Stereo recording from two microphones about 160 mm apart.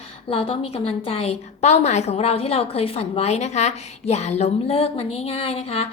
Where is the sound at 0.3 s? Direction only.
35° left (ahead or behind).